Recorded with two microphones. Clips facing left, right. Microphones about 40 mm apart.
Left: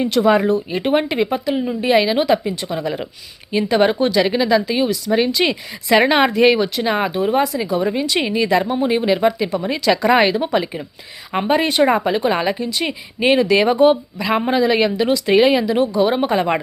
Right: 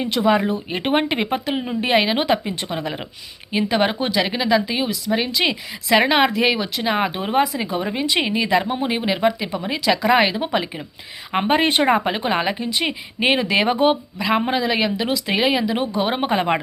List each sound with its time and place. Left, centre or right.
0.0 s speech: centre
0.7 s speech: right
2.6 s speech: right
2.8 s a woman's voice: centre
3.5 s speech: centre
7.1 s a woman's voice: right; by 10.8 s centre
11.3 s a woman's voice: right; by 15.7 s centre
15.7 s a woman's voice: right